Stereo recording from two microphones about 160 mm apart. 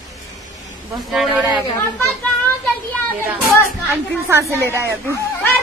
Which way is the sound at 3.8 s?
15° right (ahead or behind).